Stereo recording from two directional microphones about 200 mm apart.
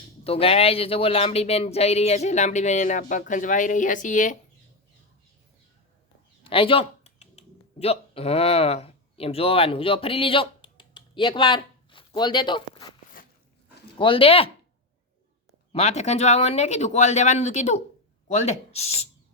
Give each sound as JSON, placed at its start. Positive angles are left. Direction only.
{"t": 0.3, "sound": "speech", "side_deg": 30}
{"t": 6.4, "sound": "speech", "side_deg": 25}
{"t": 14.0, "sound": "speech", "side_deg": 25}
{"t": 15.7, "sound": "speech", "side_deg": 35}